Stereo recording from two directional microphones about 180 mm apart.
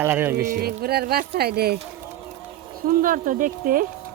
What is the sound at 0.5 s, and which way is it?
Speech, 55° right (ahead or behind).